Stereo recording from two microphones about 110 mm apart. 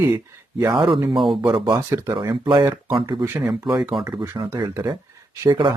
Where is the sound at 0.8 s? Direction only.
45° right (ahead or behind).